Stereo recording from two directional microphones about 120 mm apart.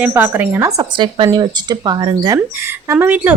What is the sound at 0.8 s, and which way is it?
Speech, 40° right (ahead or behind).